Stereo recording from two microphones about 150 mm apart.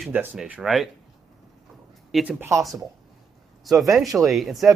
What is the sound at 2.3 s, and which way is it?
Speech, 20° right (ahead or behind).